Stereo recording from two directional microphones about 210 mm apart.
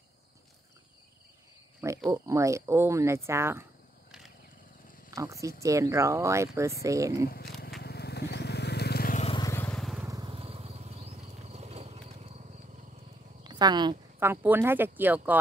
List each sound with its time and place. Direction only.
2.0 s speech: 15° right (ahead or behind)
5.1 s speech: 15° right (ahead or behind)
7.2 s speech: 45° left (ahead or behind)
7.8 s vehicle: 50° left (ahead or behind)
9.2 s vehicle: 25° left (ahead or behind)
9.5 s vehicle: 10° left (ahead or behind)
10.0 s vehicle: 20° right (ahead or behind)
13.4 s speech: 20° right (ahead or behind)